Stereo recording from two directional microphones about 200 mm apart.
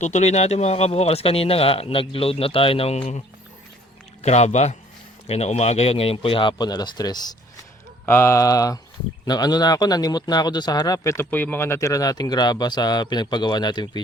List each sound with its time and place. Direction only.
0.0 s speech: 35° left (ahead or behind); by 7.3 s 20° left (ahead or behind)
8.0 s mantra: 10° left (ahead or behind)
9.2 s speech: 20° left (ahead or behind)